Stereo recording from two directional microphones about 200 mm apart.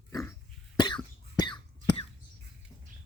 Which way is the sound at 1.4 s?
25° left (ahead or behind).